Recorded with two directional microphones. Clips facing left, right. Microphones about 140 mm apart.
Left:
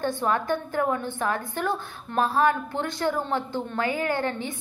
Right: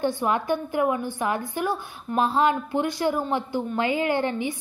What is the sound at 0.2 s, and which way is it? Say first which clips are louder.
A woman's voice: right 1 dB; 15° right (ahead or behind).